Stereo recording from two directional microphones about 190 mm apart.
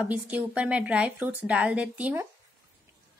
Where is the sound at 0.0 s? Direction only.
10° right (ahead or behind).